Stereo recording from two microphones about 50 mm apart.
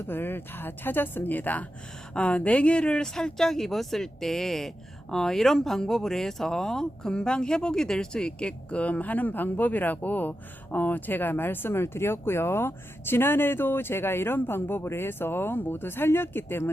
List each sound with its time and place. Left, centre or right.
0.1 s speech: left
2.1 s speech: left